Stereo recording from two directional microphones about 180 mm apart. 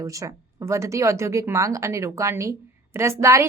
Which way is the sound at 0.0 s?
20° right (ahead or behind).